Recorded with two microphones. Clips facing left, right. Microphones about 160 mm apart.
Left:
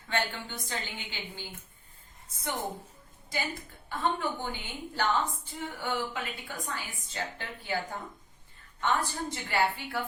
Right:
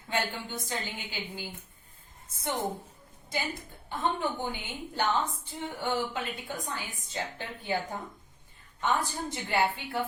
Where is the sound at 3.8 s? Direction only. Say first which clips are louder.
Even; 20° right (ahead or behind).